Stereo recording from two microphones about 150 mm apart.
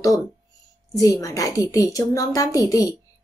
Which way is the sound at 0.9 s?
25° left (ahead or behind).